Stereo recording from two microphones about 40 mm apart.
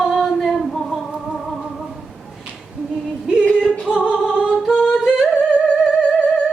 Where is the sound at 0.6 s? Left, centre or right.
Centre.